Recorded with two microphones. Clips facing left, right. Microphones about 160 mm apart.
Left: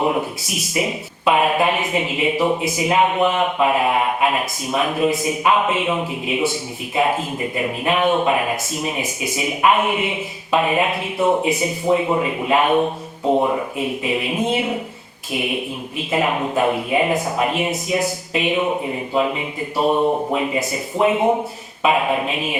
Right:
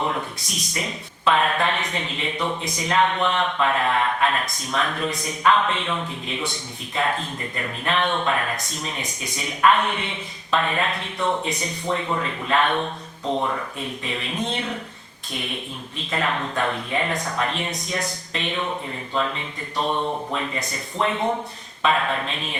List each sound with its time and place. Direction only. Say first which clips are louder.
0.0 s a man's voice: left 6 dB; 10° left (ahead or behind)
20.0 s speech: left 8 dB; 40° left (ahead or behind)
20.3 s a man's voice: left 7 dB; 10° left (ahead or behind)